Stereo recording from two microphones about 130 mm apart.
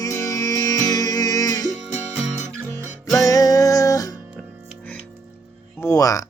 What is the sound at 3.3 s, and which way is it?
Music, 30° left (ahead or behind).